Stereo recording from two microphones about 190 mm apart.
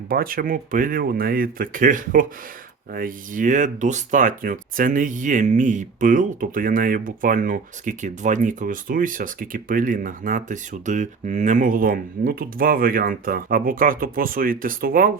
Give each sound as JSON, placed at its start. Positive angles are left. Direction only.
{"t": 0.1, "sound": "speech", "side_deg": -50}